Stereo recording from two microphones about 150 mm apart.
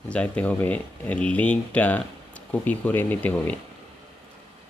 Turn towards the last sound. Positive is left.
turn(degrees=10)  # may be behind; listen again after turning